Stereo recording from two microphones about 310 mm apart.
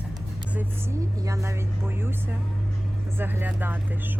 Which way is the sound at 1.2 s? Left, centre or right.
Centre.